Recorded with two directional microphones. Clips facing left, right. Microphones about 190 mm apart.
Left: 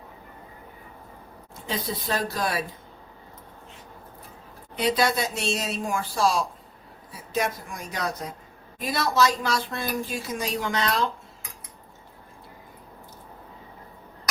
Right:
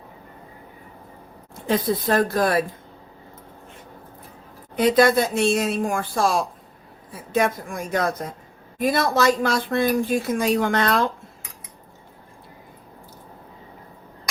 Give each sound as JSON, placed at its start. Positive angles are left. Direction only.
{"t": 1.6, "sound": "speech", "side_deg": -50}
{"t": 4.8, "sound": "speech", "side_deg": -50}